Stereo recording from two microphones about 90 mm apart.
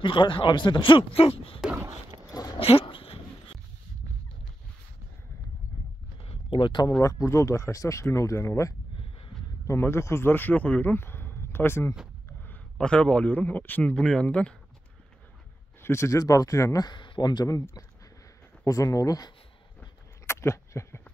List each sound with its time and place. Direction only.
0.0 s speech: 65° left (ahead or behind); by 1.6 s 90° left
2.6 s dog: 90° left
6.2 s a sound: 80° left; by 6.9 s 65° left (ahead or behind)
7.0 s speech: 35° left (ahead or behind)
12.7 s a man's voice: 10° left (ahead or behind)
15.8 s speech: 30° left (ahead or behind)
16.8 s speech: 60° left (ahead or behind); by 19.3 s 45° left (ahead or behind)
20.2 s a sound: 30° left (ahead or behind)